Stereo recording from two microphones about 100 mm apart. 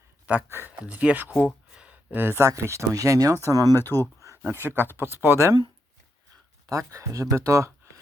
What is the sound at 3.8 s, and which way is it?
Speech, 25° left (ahead or behind).